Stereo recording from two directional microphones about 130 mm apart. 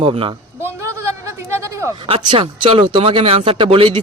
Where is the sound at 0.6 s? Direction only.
20° right (ahead or behind).